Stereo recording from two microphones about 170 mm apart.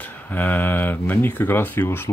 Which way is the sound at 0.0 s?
10° left (ahead or behind).